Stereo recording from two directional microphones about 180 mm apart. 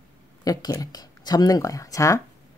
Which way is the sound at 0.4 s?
20° left (ahead or behind).